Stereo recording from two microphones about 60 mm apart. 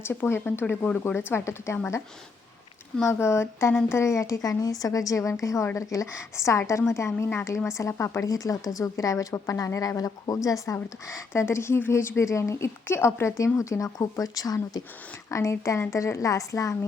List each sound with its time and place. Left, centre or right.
0.0 s speech: left
3.1 s a woman's voice: left
6.1 s speech: left
8.3 s a woman's voice: left
10.3 s speech: left
10.8 s speech: left
15.3 s speech: left